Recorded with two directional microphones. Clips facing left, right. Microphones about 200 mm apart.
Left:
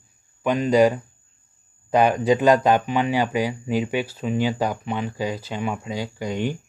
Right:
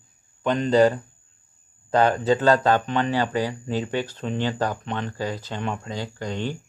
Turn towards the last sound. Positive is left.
turn(degrees=10)  # may be behind; listen again after turning